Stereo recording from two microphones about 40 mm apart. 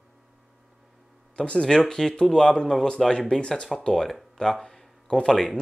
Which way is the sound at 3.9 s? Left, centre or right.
Centre.